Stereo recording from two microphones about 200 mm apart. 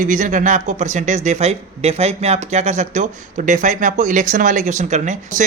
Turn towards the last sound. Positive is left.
turn(degrees=-35)  # may be behind; listen again after turning